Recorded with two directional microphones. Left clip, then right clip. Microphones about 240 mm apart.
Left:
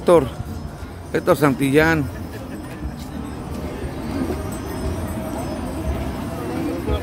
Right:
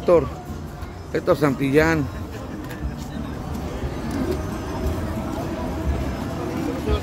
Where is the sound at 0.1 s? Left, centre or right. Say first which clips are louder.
Left 2 dB; centre.